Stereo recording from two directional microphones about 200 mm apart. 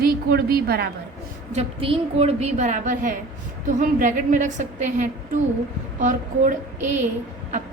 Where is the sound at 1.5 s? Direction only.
30° right (ahead or behind).